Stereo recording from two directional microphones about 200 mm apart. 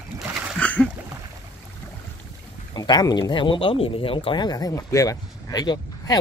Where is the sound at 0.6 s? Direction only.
5° left (ahead or behind).